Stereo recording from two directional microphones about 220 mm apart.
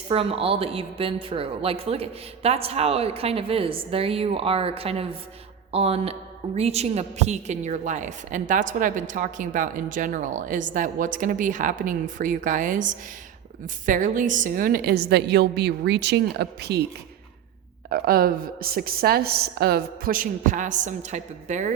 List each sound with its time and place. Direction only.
0.1 s a woman's voice: 25° right (ahead or behind); by 16.8 s 50° right (ahead or behind)
17.8 s a woman's voice: 45° right (ahead or behind)